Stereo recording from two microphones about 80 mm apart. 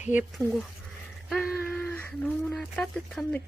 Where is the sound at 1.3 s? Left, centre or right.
Centre.